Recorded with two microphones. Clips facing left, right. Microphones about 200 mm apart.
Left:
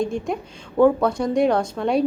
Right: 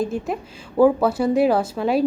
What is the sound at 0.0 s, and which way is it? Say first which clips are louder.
A woman's voice: even; 5° right (ahead or behind).